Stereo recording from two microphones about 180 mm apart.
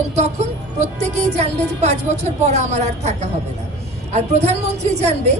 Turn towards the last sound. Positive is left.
turn(degrees=-35)  # may be behind; listen again after turning